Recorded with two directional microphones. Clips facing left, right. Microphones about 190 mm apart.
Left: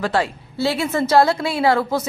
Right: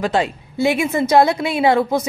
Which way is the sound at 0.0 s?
20° right (ahead or behind).